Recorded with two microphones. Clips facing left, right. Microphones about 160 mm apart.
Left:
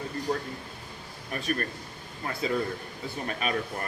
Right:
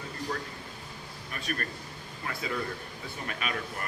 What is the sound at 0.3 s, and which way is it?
A man's voice, 25° left (ahead or behind).